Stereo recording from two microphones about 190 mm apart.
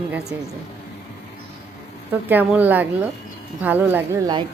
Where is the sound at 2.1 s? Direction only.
10° right (ahead or behind).